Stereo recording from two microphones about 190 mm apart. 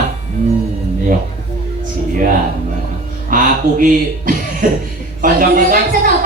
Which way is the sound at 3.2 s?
45° right (ahead or behind).